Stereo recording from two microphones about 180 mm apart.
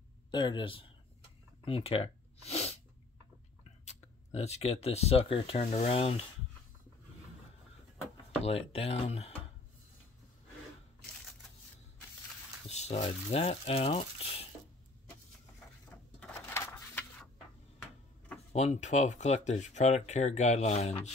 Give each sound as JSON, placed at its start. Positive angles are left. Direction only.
{"t": 0.3, "sound": "speech", "side_deg": 25}
{"t": 1.6, "sound": "a sound", "side_deg": 30}
{"t": 3.8, "sound": "speech", "side_deg": 35}
{"t": 8.4, "sound": "speech", "side_deg": 35}
{"t": 12.6, "sound": "speech", "side_deg": 35}
{"t": 16.3, "sound": "a sound", "side_deg": 15}
{"t": 18.5, "sound": "speech", "side_deg": 40}